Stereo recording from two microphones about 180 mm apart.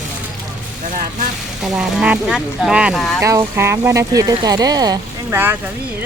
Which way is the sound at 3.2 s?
15° right (ahead or behind).